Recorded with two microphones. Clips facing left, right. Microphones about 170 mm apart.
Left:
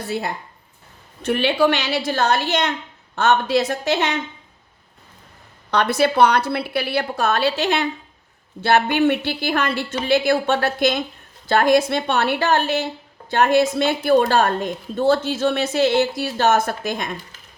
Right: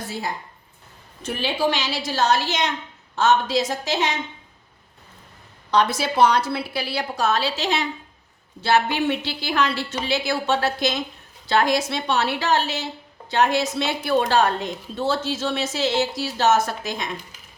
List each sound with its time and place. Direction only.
1.2 s a woman's voice: 65° left (ahead or behind)
5.7 s a woman's voice: 60° left (ahead or behind)